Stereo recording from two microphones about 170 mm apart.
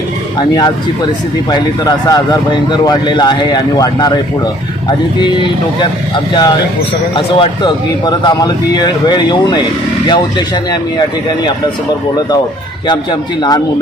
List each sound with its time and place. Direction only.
0.3 s speech: 25° left (ahead or behind)
5.8 s speech: 30° left (ahead or behind)
12.9 s speech: 25° left (ahead or behind)